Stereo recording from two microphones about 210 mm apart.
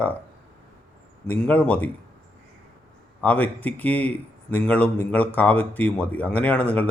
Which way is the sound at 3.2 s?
5° left (ahead or behind).